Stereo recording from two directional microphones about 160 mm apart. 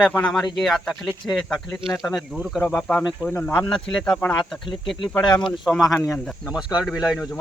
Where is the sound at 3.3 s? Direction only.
15° left (ahead or behind); by 7.3 s 5° right (ahead or behind).